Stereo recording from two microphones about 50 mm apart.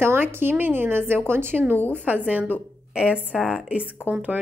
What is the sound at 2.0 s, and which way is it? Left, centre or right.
A woman's voice, right.